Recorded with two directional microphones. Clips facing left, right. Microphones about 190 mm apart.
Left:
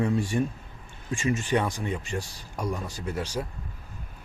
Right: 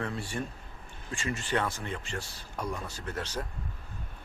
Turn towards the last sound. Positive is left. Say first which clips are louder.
# left 5 dB
turn(degrees=10)  # may be behind; listen again after turning